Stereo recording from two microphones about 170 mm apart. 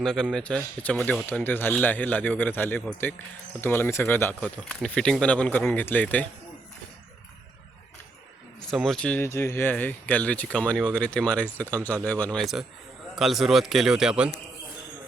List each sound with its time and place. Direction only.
0.0 s speech: 5° left (ahead or behind)
8.7 s a man's voice: centre (ahead or behind)